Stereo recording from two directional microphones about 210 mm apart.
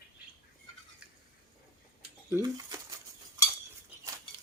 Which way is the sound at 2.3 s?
15° right (ahead or behind).